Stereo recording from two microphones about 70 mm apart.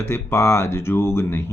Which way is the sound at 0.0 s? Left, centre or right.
Left.